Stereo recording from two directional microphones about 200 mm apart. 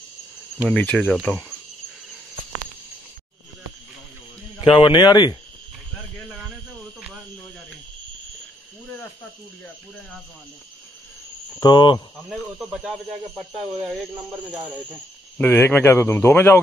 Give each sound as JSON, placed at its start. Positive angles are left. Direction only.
{"t": 0.7, "sound": "speech", "side_deg": 5}
{"t": 4.6, "sound": "speech", "side_deg": 25}
{"t": 11.6, "sound": "speech", "side_deg": 20}
{"t": 12.3, "sound": "speech", "side_deg": 0}
{"t": 15.3, "sound": "speech", "side_deg": 10}